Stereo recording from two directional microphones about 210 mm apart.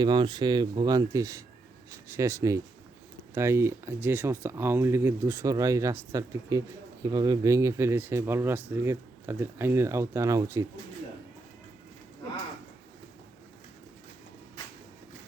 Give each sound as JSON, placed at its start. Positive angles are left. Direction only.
{"t": 0.0, "sound": "speech", "side_deg": -20}